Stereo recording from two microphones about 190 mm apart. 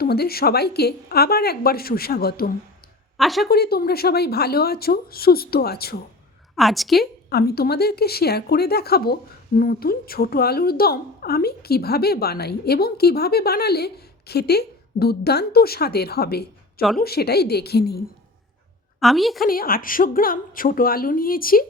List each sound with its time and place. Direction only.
0.0 s a woman's voice: 55° left (ahead or behind)
3.2 s a woman's voice: centre (ahead or behind)
3.5 s a woman's voice: 55° left (ahead or behind)
6.6 s a woman's voice: centre (ahead or behind)
7.0 s a woman's voice: 55° left (ahead or behind)
18.9 s a woman's voice: centre (ahead or behind)
19.5 s a woman's voice: 50° left (ahead or behind)